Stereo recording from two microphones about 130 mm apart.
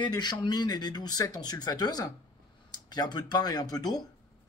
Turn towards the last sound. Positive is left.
turn(degrees=30)  # may be behind; listen again after turning